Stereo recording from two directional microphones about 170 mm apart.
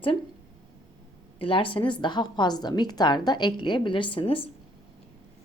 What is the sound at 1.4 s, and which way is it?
A woman's voice, 30° left (ahead or behind).